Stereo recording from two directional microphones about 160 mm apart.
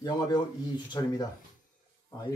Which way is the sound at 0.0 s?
25° left (ahead or behind).